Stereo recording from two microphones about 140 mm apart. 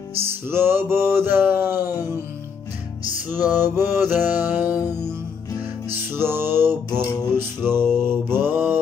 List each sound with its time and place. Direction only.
0.2 s music: 15° right (ahead or behind)
3.3 s music: 15° right (ahead or behind)
5.9 s music: 15° right (ahead or behind)